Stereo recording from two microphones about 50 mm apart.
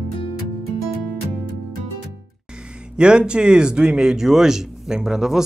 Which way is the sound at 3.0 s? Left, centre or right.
Centre.